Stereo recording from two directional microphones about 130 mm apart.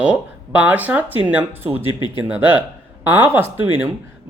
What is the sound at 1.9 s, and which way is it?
Speech, 35° left (ahead or behind).